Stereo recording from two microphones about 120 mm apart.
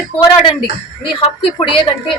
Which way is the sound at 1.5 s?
45° left (ahead or behind).